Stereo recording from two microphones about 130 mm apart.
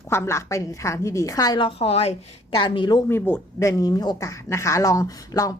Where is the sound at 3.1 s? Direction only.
20° left (ahead or behind).